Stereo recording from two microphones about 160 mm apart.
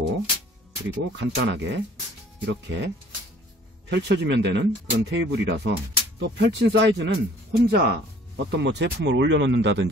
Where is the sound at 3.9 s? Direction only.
90° right.